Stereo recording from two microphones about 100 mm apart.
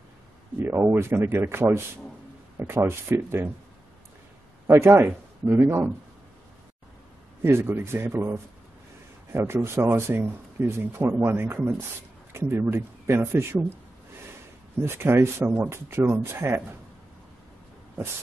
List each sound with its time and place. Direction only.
0.6 s speech: 25° right (ahead or behind)
4.6 s speech: 25° right (ahead or behind)
7.4 s speech: 25° right (ahead or behind)
14.8 s speech: 25° right (ahead or behind)